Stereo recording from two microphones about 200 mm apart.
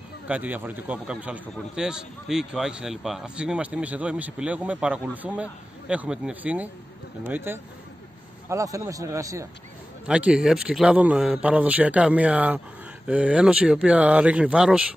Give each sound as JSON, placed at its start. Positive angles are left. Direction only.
{"t": 0.3, "sound": "a man's voice", "side_deg": -10}
{"t": 10.0, "sound": "a man's voice", "side_deg": -5}